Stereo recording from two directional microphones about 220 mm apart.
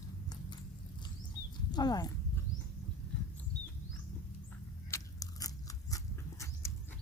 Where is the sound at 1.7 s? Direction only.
20° left (ahead or behind).